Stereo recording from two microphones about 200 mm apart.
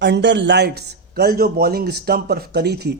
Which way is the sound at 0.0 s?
60° right (ahead or behind).